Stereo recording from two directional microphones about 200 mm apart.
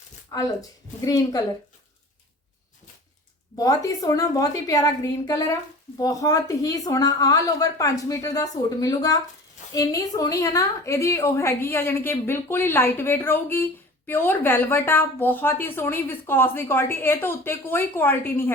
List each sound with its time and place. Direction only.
0.3 s speech: 15° left (ahead or behind)
3.6 s speech: 15° left (ahead or behind)